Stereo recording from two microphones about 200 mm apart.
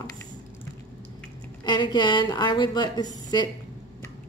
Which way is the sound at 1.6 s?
20° left (ahead or behind).